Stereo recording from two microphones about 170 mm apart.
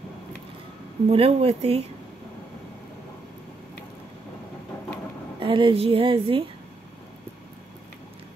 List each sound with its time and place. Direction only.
1.0 s speech: 35° right (ahead or behind)
5.4 s a woman's voice: 30° right (ahead or behind)